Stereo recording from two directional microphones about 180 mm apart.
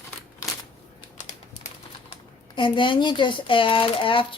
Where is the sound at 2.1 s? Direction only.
25° left (ahead or behind).